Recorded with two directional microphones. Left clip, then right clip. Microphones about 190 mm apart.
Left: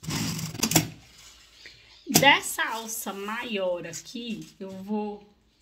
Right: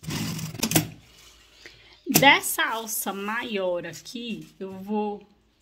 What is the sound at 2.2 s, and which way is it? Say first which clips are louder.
Speech: right 2 dB; 45° right (ahead or behind).